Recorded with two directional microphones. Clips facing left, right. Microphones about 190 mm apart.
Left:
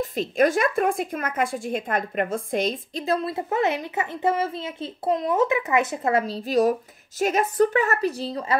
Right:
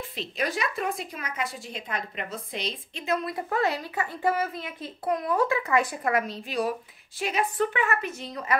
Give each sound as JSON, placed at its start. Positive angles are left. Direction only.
{"t": 0.0, "sound": "a woman's voice", "side_deg": 45}